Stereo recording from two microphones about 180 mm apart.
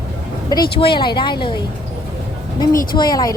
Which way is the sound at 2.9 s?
20° left (ahead or behind).